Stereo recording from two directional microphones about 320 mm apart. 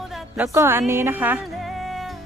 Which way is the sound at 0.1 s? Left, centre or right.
Centre.